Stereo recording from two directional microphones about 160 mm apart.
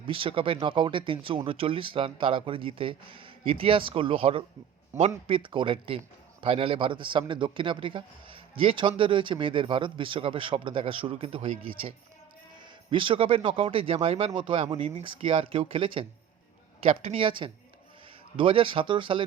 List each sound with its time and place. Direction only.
0.1 s a man's voice: 35° right (ahead or behind)